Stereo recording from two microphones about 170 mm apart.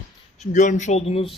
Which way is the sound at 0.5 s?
45° left (ahead or behind).